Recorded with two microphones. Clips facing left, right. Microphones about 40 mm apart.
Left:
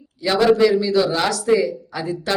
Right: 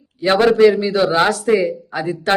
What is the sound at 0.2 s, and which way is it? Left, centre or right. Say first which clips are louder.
Speech: right 3 dB; right.